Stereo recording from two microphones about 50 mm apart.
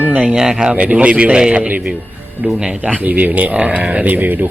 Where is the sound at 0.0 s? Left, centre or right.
Right.